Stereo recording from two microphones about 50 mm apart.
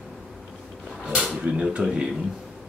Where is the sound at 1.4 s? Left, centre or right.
Right.